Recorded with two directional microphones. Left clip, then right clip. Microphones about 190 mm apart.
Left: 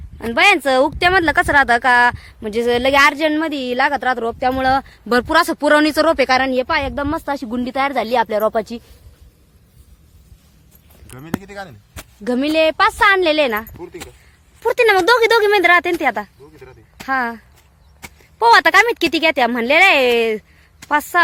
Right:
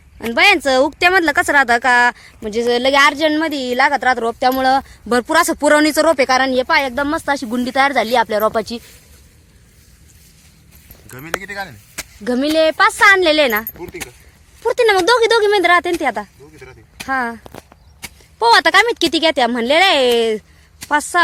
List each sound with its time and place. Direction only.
0.2 s speech: centre (ahead or behind)
11.4 s speech: 65° left (ahead or behind)
12.2 s speech: 10° left (ahead or behind)